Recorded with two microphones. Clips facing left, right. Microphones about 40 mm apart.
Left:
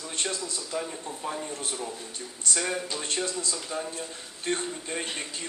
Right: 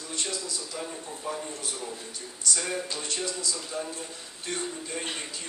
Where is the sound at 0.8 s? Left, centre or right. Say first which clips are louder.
Left 3 dB; left.